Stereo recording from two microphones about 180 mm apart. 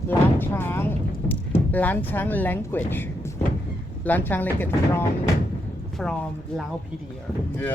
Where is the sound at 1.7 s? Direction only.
10° left (ahead or behind).